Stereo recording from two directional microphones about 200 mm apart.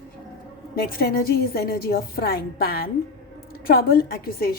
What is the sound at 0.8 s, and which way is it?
A woman's voice, 50° left (ahead or behind).